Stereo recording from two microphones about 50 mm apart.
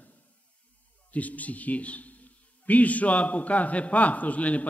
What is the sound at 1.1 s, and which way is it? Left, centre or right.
A man's voice, left.